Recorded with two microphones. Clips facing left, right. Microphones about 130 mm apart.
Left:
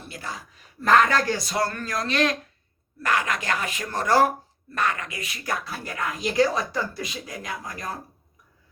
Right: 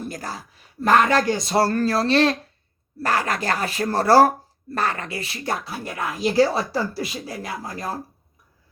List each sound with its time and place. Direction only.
0.0 s speech: 40° right (ahead or behind)